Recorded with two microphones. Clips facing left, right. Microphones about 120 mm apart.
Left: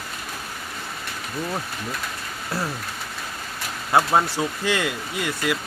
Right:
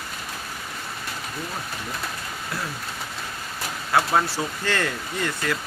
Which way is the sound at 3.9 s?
20° left (ahead or behind).